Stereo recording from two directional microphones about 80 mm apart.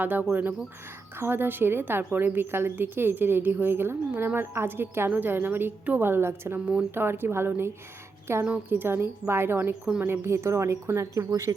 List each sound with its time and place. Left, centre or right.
0.0 s a woman's voice: right